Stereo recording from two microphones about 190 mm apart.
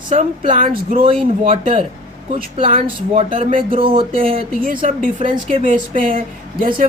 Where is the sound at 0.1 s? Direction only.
40° right (ahead or behind).